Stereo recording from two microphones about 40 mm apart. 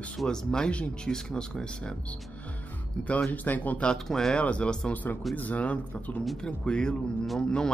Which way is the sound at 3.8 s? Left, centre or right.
Centre.